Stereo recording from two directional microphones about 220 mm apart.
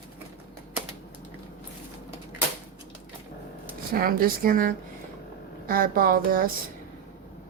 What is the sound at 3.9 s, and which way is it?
Speech, 40° right (ahead or behind).